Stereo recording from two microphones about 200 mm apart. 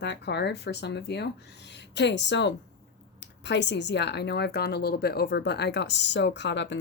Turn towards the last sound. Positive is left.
turn(degrees=60)  # may be behind; listen again after turning